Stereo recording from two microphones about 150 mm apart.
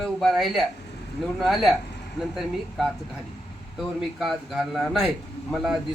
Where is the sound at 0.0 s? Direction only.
Centre (ahead or behind).